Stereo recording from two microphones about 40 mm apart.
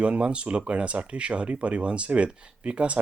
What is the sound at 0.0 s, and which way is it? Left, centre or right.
Speech, right.